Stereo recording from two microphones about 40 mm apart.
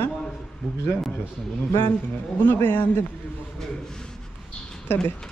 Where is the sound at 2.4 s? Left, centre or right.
Left.